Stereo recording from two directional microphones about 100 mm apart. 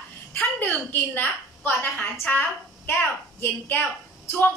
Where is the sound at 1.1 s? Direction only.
20° left (ahead or behind).